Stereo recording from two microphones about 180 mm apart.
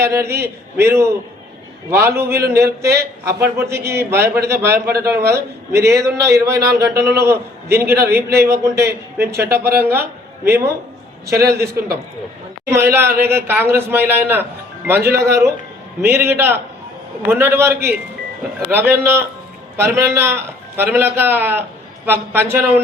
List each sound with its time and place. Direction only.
0.0 s a man's voice: 15° right (ahead or behind)
0.3 s a man's voice: 65° right (ahead or behind)
0.8 s a man's voice: 15° right (ahead or behind)